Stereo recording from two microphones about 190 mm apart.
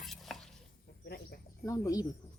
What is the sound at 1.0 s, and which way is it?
Speech, 55° left (ahead or behind).